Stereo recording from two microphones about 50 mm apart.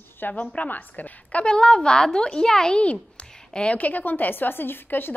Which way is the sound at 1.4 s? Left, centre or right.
Centre.